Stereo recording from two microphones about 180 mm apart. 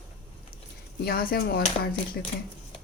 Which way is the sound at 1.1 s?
55° left (ahead or behind).